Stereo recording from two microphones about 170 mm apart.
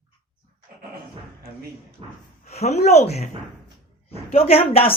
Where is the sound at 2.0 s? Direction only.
35° right (ahead or behind).